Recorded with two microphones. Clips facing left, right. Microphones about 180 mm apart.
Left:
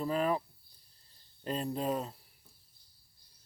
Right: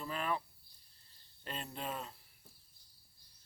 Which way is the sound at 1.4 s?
35° left (ahead or behind).